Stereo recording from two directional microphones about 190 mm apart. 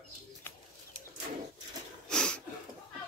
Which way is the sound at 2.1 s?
5° left (ahead or behind).